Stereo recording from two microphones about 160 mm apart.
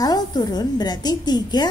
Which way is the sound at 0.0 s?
25° left (ahead or behind).